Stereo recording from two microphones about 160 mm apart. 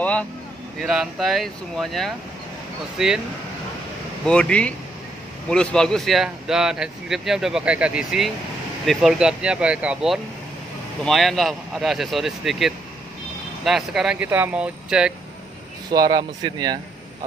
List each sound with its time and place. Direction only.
0.0 s speech: 10° left (ahead or behind)
0.7 s speech: centre (ahead or behind)
4.3 s speech: 5° left (ahead or behind)
15.9 s speech: 25° right (ahead or behind)